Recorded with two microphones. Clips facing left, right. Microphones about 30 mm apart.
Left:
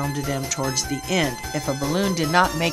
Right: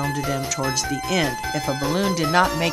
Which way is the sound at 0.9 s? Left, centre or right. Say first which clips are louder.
Even; centre.